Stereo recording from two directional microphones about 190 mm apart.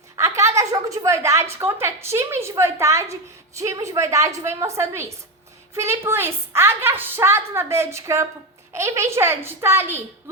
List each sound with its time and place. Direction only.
0.2 s a woman's voice: 15° right (ahead or behind)